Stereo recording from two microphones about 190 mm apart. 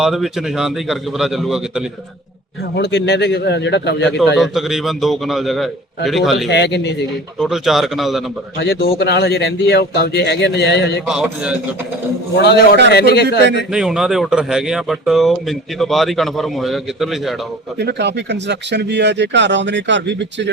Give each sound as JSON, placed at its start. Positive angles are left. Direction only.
{"t": 0.0, "sound": "speech", "side_deg": 0}
{"t": 2.7, "sound": "speech", "side_deg": 65}
{"t": 4.4, "sound": "speech", "side_deg": 0}
{"t": 6.5, "sound": "speech", "side_deg": 65}
{"t": 7.3, "sound": "speech", "side_deg": 0}
{"t": 8.5, "sound": "speech", "side_deg": 60}
{"t": 11.0, "sound": "speech", "side_deg": -5}
{"t": 12.4, "sound": "speech", "side_deg": 60}
{"t": 13.4, "sound": "a man's voice", "side_deg": -65}
{"t": 13.7, "sound": "speech", "side_deg": -5}
{"t": 17.7, "sound": "speech", "side_deg": -65}